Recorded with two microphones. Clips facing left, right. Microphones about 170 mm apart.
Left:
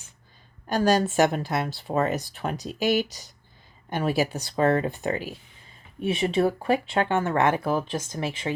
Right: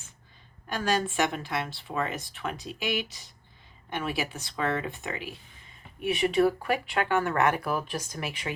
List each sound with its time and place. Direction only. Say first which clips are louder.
0.7 s speech: left 6 dB; 40° left (ahead or behind)
6.0 s speech: left 1 dB; 25° left (ahead or behind)